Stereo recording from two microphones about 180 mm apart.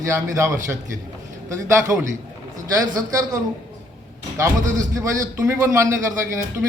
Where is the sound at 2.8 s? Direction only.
20° right (ahead or behind).